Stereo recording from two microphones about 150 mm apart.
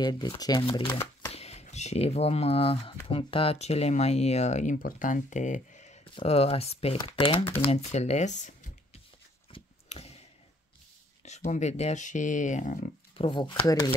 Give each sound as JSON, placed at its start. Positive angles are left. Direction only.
{"t": 0.0, "sound": "speech", "side_deg": 25}
{"t": 1.3, "sound": "speech", "side_deg": 45}
{"t": 6.1, "sound": "speech", "side_deg": 40}
{"t": 9.5, "sound": "a sound", "side_deg": 45}
{"t": 11.4, "sound": "speech", "side_deg": 55}
{"t": 13.1, "sound": "speech", "side_deg": 35}